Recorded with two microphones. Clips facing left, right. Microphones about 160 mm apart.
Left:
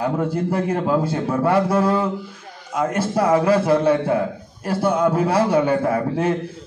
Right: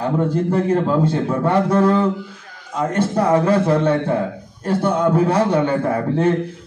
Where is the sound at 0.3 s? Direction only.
10° left (ahead or behind).